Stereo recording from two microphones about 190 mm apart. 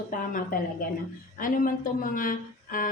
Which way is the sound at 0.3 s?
50° left (ahead or behind).